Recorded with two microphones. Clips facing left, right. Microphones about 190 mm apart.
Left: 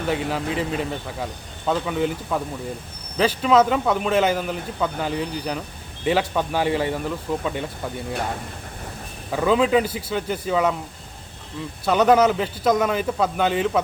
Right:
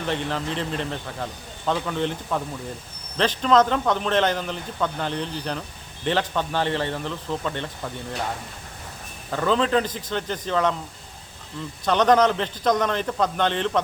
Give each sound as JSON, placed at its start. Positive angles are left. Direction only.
{"t": 0.1, "sound": "a man's voice", "side_deg": 5}
{"t": 9.3, "sound": "a man's voice", "side_deg": 10}
{"t": 11.9, "sound": "a man's voice", "side_deg": 10}